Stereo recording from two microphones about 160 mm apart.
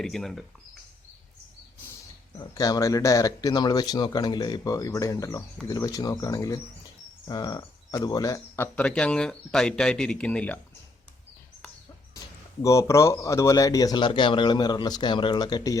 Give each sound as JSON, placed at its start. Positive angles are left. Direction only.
{"t": 0.0, "sound": "speech", "side_deg": 0}
{"t": 2.4, "sound": "speech", "side_deg": 25}
{"t": 12.6, "sound": "speech", "side_deg": 20}